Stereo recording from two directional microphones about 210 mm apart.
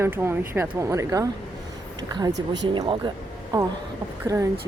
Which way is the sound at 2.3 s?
60° right (ahead or behind).